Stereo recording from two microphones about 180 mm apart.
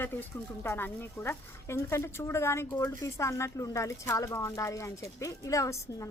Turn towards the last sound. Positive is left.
turn(degrees=15)  # may be behind; listen again after turning